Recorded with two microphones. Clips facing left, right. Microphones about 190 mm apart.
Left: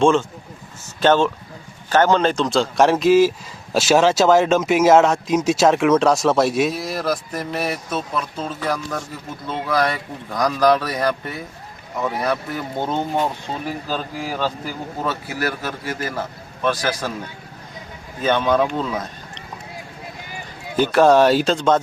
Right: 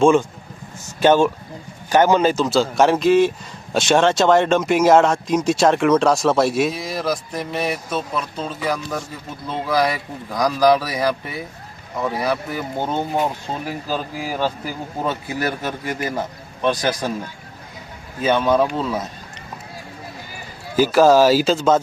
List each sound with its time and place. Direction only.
0.0 s a man's voice: 10° right (ahead or behind)
18.2 s a man's voice: 5° right (ahead or behind)
20.7 s a man's voice: 5° right (ahead or behind)